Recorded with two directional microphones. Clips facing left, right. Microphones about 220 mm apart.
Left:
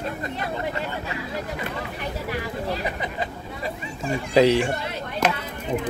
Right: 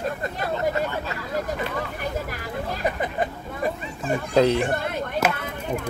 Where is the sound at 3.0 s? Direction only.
50° right (ahead or behind).